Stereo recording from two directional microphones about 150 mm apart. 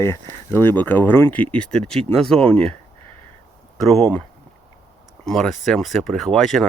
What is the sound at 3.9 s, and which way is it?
Speech, 5° left (ahead or behind).